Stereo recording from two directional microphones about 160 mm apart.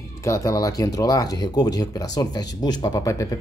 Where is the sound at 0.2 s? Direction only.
20° left (ahead or behind).